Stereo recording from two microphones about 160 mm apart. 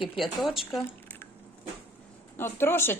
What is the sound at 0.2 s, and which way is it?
Speech, centre (ahead or behind).